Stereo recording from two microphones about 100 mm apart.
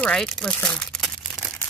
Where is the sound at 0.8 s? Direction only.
5° left (ahead or behind).